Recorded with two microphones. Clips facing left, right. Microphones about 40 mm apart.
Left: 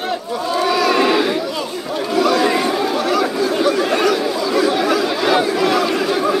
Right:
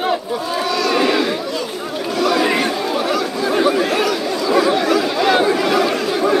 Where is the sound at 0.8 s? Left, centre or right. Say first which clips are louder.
Even; centre.